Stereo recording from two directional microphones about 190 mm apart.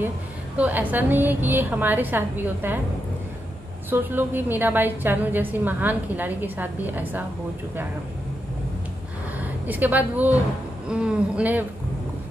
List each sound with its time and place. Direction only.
0.6 s a woman's voice: 10° right (ahead or behind)
3.9 s a woman's voice: 10° right (ahead or behind)
9.4 s a woman's voice: 10° right (ahead or behind)